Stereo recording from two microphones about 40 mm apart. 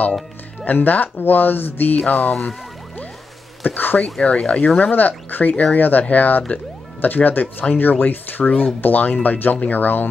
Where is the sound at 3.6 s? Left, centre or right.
Left.